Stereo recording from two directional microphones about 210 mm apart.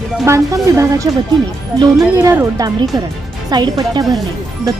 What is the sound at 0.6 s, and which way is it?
Speech, 15° right (ahead or behind).